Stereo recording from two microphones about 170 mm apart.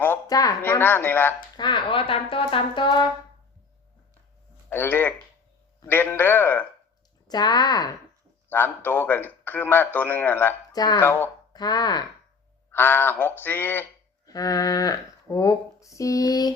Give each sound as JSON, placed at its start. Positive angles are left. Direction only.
{"t": 0.0, "sound": "a man's voice", "side_deg": 15}
{"t": 1.5, "sound": "speech", "side_deg": 25}
{"t": 4.7, "sound": "a man's voice", "side_deg": 10}
{"t": 7.3, "sound": "speech", "side_deg": 25}
{"t": 8.4, "sound": "a man's voice", "side_deg": 10}
{"t": 10.7, "sound": "speech", "side_deg": 25}
{"t": 11.0, "sound": "a man's voice", "side_deg": 10}
{"t": 11.5, "sound": "speech", "side_deg": 25}
{"t": 12.7, "sound": "a man's voice", "side_deg": 10}